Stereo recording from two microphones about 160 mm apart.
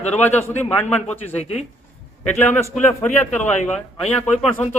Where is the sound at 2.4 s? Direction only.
15° left (ahead or behind).